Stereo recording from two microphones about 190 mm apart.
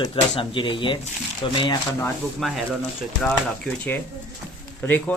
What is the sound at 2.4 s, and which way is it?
Speech, centre (ahead or behind).